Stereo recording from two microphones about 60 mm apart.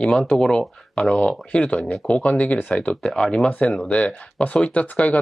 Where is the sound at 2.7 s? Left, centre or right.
Centre.